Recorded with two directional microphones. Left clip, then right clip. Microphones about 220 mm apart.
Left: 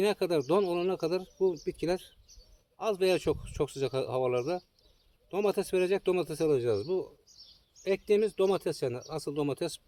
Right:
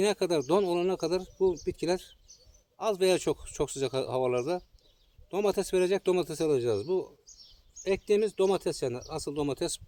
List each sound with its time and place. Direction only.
0.0 s speech: 25° right (ahead or behind)